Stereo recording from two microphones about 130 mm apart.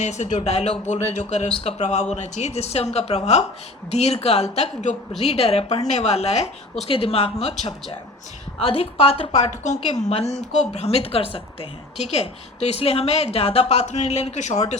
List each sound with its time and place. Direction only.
0.0 s a woman's voice: 65° left (ahead or behind)
1.5 s speech: 45° left (ahead or behind)
1.8 s a woman's voice: 60° left (ahead or behind)
5.2 s a woman's voice: 50° left (ahead or behind)
8.6 s speech: 50° left (ahead or behind)